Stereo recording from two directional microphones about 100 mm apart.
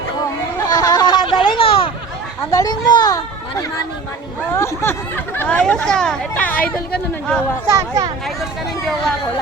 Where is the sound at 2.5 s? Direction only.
40° left (ahead or behind); by 7.4 s 10° left (ahead or behind).